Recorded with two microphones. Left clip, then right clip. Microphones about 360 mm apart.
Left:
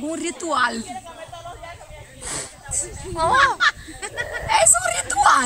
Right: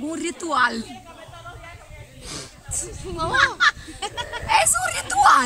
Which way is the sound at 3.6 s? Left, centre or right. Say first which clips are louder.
Right 1 dB; centre.